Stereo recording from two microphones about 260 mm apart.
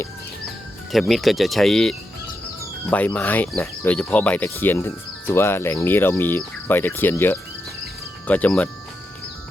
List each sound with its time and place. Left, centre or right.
0.9 s speech: centre